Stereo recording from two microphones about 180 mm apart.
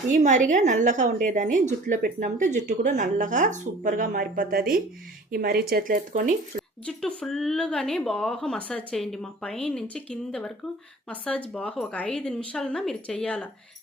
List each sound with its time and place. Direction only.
0.2 s a woman's voice: 45° right (ahead or behind)
6.6 s a woman's voice: 5° left (ahead or behind)